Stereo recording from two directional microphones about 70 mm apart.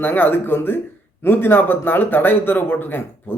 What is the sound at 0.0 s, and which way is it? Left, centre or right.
Speech, left.